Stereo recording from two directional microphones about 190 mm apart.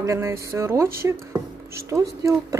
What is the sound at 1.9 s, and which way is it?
Speech, 15° right (ahead or behind).